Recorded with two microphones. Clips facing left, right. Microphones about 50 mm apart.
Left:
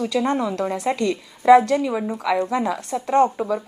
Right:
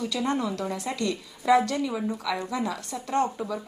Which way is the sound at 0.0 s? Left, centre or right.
Left.